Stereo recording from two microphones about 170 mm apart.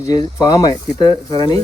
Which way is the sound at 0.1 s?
20° left (ahead or behind).